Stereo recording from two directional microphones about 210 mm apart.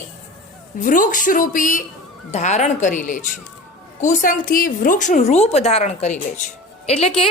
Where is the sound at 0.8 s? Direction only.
40° left (ahead or behind).